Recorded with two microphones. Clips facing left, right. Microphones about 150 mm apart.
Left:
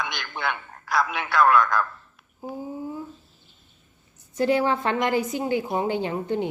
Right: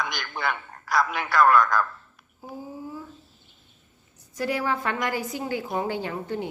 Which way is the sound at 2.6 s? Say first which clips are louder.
Left 3 dB; 20° left (ahead or behind).